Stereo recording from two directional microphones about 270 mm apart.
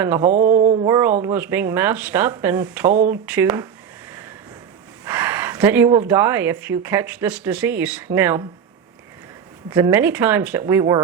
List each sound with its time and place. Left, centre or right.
0.0 s speech: centre
0.3 s mantra: right
0.9 s speech: centre
5.0 s speech: centre
9.6 s speech: centre